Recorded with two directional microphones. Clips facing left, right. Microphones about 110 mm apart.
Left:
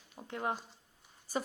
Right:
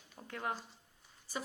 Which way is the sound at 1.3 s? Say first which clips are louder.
Left 6 dB; 45° left (ahead or behind).